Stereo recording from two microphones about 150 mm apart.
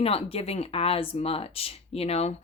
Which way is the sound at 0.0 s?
40° left (ahead or behind).